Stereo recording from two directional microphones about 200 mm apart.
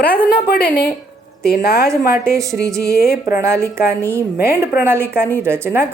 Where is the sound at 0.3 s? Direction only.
50° left (ahead or behind).